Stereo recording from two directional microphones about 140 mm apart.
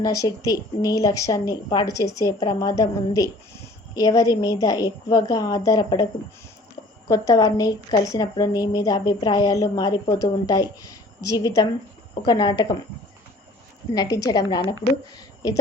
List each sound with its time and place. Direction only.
0.0 s a woman's voice: 25° left (ahead or behind)
7.1 s a woman's voice: 25° left (ahead or behind)
13.9 s a woman's voice: 25° left (ahead or behind)